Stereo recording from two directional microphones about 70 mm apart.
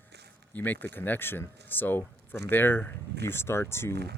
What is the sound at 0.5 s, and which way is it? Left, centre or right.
Speech, left.